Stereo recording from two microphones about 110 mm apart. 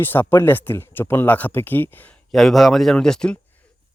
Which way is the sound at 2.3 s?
Centre (ahead or behind).